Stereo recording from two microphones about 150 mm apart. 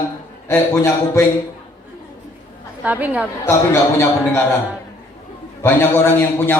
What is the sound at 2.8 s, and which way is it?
Speech, 10° right (ahead or behind).